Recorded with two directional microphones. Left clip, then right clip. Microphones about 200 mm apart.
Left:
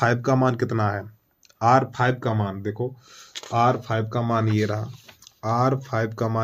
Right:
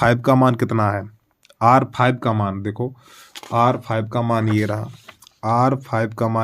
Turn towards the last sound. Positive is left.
turn(degrees=-40)  # may be behind; listen again after turning